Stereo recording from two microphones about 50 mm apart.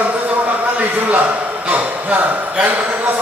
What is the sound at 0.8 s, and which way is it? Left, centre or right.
A man's voice, right.